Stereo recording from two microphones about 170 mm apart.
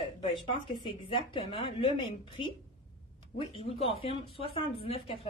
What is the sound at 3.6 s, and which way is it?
Speech, 35° left (ahead or behind).